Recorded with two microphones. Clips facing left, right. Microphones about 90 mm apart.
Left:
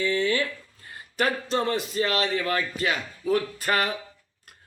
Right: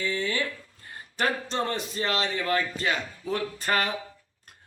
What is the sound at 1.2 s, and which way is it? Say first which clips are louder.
Speech: left 3 dB; 30° right (ahead or behind).